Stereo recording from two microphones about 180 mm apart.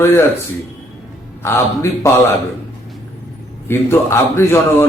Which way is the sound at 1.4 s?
15° left (ahead or behind).